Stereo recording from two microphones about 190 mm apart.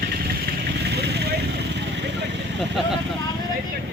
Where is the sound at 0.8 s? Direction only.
60° right (ahead or behind).